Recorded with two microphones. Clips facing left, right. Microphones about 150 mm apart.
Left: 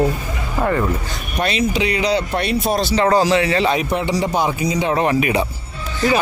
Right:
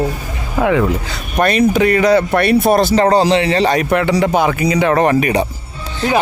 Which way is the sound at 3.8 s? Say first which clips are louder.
Right 5 dB; 65° right (ahead or behind).